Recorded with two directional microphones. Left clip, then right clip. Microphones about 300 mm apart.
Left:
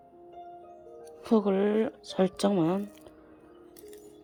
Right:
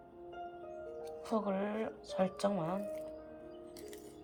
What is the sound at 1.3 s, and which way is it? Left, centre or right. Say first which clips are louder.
Speech: left 11 dB; left.